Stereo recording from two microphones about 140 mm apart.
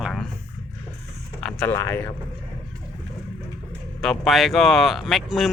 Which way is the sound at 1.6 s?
15° left (ahead or behind).